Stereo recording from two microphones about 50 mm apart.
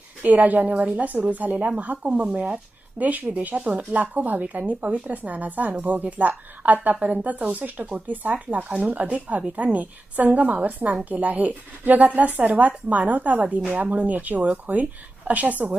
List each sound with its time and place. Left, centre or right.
0.2 s a woman's voice: right
3.0 s a woman's voice: right
3.9 s a woman's voice: right